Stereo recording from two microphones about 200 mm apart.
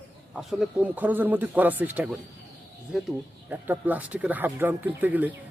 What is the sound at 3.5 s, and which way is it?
Speech, 10° right (ahead or behind).